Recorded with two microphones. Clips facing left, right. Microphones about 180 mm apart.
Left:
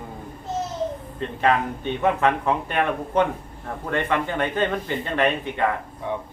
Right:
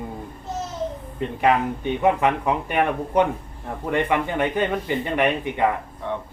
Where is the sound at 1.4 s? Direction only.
15° right (ahead or behind).